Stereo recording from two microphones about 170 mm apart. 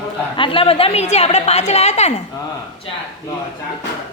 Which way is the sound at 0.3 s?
30° left (ahead or behind).